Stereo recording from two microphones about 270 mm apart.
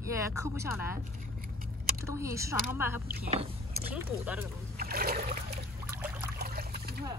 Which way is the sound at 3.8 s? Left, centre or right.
Centre.